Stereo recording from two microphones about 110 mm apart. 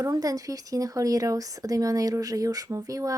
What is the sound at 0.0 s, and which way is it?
Speech, 35° right (ahead or behind).